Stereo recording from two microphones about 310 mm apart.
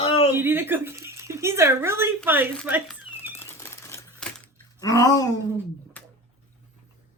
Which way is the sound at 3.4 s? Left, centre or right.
Centre.